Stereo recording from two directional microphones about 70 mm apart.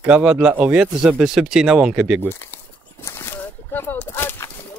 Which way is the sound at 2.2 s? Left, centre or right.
Left.